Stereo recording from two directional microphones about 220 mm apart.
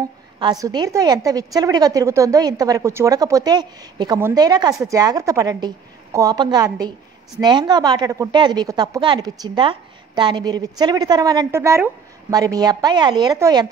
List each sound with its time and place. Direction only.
0.4 s a woman's voice: 15° right (ahead or behind)